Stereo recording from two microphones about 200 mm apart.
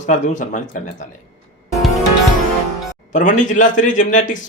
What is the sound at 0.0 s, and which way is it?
A man's voice, 40° left (ahead or behind).